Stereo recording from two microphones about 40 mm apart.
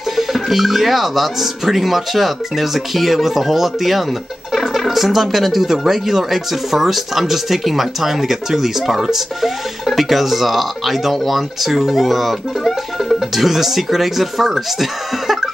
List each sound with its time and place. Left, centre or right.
0.1 s speech: centre